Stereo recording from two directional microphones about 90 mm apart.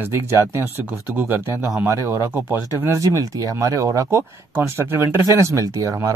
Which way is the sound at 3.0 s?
40° right (ahead or behind).